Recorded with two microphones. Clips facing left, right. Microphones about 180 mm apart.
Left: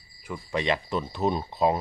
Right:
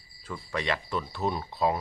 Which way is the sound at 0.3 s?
20° left (ahead or behind).